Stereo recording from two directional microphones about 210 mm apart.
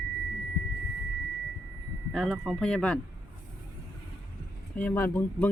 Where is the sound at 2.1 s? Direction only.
Centre (ahead or behind).